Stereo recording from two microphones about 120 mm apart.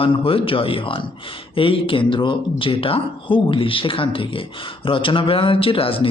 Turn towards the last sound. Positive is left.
turn(degrees=50)  # may be behind; listen again after turning